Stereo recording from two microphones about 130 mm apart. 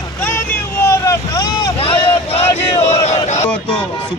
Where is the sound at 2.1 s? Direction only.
20° left (ahead or behind).